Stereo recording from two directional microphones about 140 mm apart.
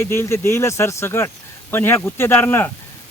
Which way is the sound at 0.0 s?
20° left (ahead or behind).